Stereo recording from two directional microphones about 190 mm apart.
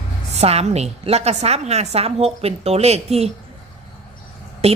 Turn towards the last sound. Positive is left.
turn(degrees=-35)  # may be behind; listen again after turning